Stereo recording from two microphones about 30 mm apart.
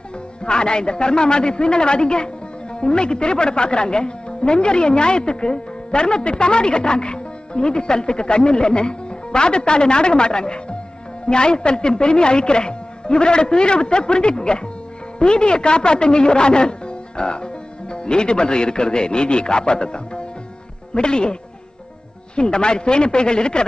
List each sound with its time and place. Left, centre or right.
0.5 s speech: left